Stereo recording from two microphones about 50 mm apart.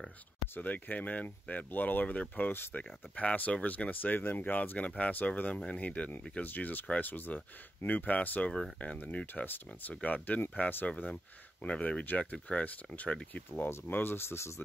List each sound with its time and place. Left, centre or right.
0.6 s speech: left
4.7 s speech: left
6.4 s speech: left
13.5 s speech: left